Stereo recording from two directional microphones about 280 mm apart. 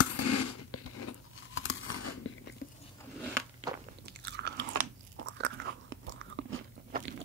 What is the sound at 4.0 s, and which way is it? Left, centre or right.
Chewing, right.